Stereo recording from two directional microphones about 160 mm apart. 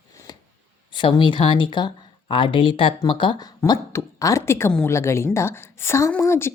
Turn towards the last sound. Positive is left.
turn(degrees=15)  # may be behind; listen again after turning